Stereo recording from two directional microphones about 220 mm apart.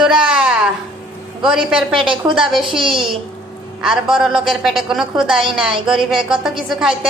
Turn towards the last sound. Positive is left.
turn(degrees=0)  # may be behind; listen again after turning